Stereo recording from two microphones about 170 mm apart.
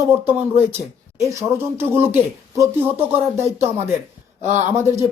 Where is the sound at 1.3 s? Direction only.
15° right (ahead or behind).